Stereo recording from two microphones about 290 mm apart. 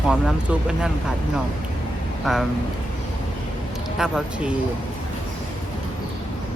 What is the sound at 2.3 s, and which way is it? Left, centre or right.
Speech, centre.